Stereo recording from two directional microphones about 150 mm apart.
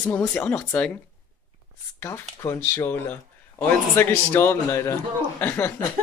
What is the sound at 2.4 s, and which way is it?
A man's voice, 20° left (ahead or behind).